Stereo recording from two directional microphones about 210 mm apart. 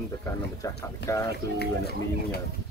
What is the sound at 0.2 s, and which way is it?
Speech, 15° left (ahead or behind).